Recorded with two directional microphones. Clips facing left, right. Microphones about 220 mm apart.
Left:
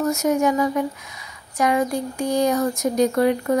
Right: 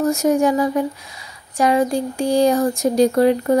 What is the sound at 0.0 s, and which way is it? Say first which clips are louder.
Speech: right 3 dB; 30° right (ahead or behind).